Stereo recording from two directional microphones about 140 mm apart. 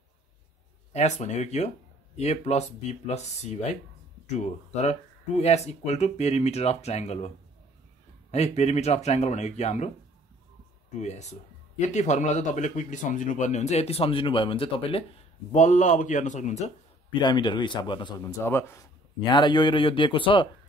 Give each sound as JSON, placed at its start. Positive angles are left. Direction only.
{"t": 0.9, "sound": "speech", "side_deg": 55}
{"t": 11.0, "sound": "speech", "side_deg": 55}
{"t": 15.5, "sound": "speech", "side_deg": 60}
{"t": 17.1, "sound": "speech", "side_deg": 35}
{"t": 18.2, "sound": "speech", "side_deg": 20}
{"t": 19.3, "sound": "speech", "side_deg": 30}